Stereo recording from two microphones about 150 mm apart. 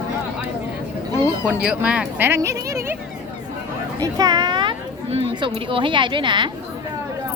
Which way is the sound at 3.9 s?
25° right (ahead or behind).